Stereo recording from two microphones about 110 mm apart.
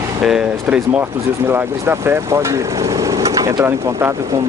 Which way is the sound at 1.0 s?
20° right (ahead or behind).